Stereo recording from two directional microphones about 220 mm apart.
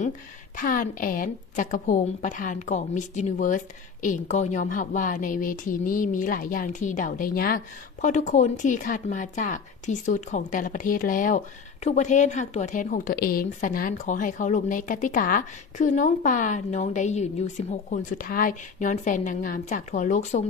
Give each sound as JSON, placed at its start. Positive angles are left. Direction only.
{"t": 0.6, "sound": "a woman's voice", "side_deg": 40}